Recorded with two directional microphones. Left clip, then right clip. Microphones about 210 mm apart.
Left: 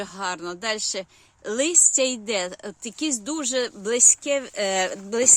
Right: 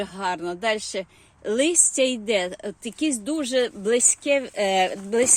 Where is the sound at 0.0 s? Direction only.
10° left (ahead or behind).